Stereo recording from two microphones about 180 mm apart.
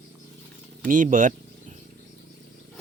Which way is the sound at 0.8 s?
45° right (ahead or behind).